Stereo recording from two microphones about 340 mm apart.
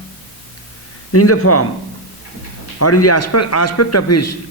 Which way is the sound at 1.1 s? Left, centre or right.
Left.